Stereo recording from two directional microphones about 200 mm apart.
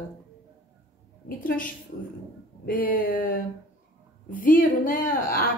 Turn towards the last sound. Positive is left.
turn(degrees=45)  # may be behind; listen again after turning